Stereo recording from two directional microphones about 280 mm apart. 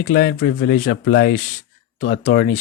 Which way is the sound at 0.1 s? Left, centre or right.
Left.